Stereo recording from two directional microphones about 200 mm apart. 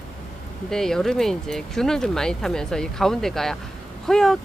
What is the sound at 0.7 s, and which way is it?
Speech, centre (ahead or behind).